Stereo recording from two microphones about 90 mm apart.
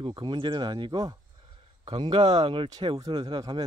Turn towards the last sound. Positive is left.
turn(degrees=-60)  # may be behind; listen again after turning